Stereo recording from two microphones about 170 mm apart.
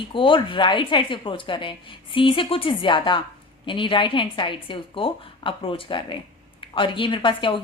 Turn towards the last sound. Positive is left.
turn(degrees=30)  # may be behind; listen again after turning